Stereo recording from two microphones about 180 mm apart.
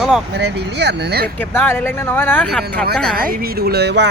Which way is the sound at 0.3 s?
70° right (ahead or behind).